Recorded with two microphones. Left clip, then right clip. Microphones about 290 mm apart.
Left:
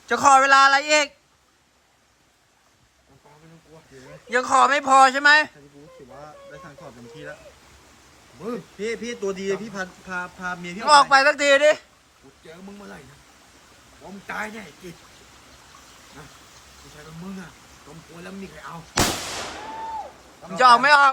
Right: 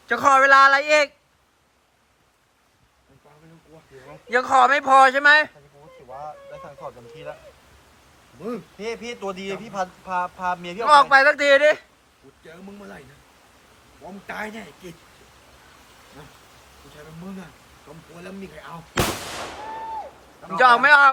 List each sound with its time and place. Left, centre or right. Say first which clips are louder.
0.1 s speech: even; centre
4.3 s speech: right 1 dB; centre
8.8 s a man's voice: left 3 dB; centre
10.8 s speech: right 1 dB; centre
14.3 s speech: left 1 dB; centre
18.2 s speech: even; centre
20.6 s speech: even; centre